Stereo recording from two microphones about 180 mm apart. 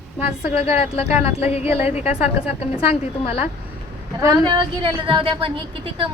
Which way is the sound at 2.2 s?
35° left (ahead or behind).